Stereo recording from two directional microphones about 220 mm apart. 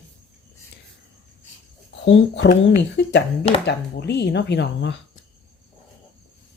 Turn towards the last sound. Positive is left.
turn(degrees=50)  # may be behind; listen again after turning